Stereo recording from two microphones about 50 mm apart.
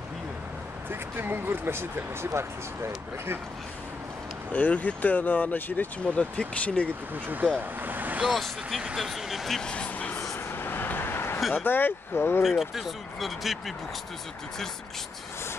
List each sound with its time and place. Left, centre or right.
0.8 s speech: right
4.5 s speech: left
6.0 s speech: left
7.2 s speech: right
7.8 s vehicle: right
8.3 s speech: centre
9.6 s vehicle: left
10.5 s vehicle: left
11.6 s speech: left
12.4 s speech: centre